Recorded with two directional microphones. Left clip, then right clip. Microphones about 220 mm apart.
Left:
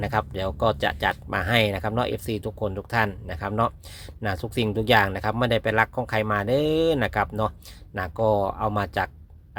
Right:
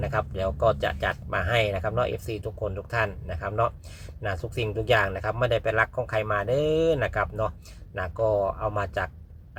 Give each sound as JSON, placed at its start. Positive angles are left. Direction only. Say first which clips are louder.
{"t": 0.0, "sound": "speech", "louder": "left 1 dB", "side_deg": 40}